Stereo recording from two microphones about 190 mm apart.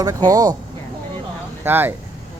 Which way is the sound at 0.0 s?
20° right (ahead or behind).